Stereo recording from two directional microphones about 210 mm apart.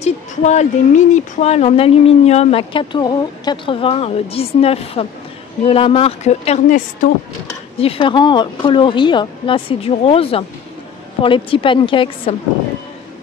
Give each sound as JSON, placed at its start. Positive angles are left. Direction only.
{"t": 0.0, "sound": "speech", "side_deg": 35}